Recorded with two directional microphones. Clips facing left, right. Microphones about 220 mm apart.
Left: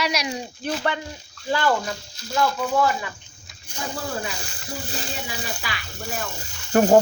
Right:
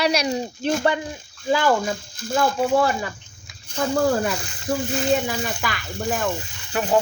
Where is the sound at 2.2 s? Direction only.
50° right (ahead or behind).